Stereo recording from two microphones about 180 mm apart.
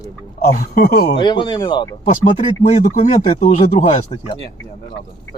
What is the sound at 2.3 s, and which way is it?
Speech, 40° left (ahead or behind).